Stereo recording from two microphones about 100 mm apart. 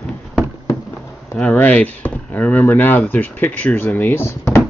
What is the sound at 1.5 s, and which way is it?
Speech, 15° left (ahead or behind).